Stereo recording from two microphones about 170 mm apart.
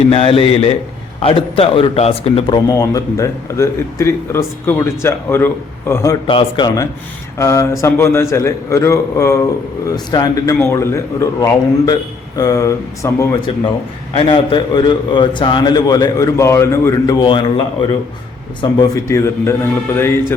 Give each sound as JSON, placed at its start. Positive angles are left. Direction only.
{"t": 0.1, "sound": "a man's voice", "side_deg": 35}
{"t": 2.6, "sound": "a man's voice", "side_deg": 20}
{"t": 6.2, "sound": "a man's voice", "side_deg": 30}
{"t": 7.3, "sound": "a man's voice", "side_deg": 15}
{"t": 14.2, "sound": "a man's voice", "side_deg": 30}
{"t": 18.6, "sound": "a man's voice", "side_deg": 20}